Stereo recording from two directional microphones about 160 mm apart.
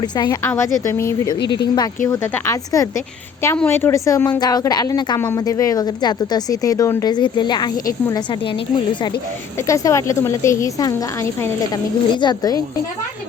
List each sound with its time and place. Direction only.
0.0 s a woman's voice: 25° left (ahead or behind)
2.0 s a woman's voice: 15° left (ahead or behind)
9.6 s speech: 20° left (ahead or behind)